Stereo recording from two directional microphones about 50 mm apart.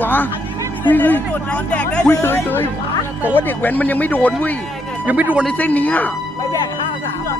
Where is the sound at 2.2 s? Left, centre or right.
Left.